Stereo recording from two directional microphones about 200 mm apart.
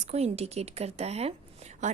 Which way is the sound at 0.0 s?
30° right (ahead or behind).